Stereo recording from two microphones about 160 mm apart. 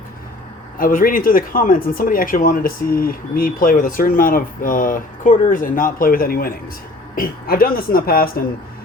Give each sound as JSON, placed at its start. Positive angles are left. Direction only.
{"t": 0.8, "sound": "speech", "side_deg": 60}